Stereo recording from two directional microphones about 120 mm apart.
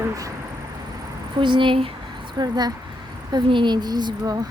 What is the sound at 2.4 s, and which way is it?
Speech, 35° right (ahead or behind).